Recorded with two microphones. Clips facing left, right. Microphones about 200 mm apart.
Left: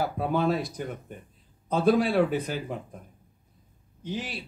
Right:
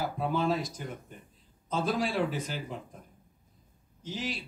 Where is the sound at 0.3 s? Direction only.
55° left (ahead or behind).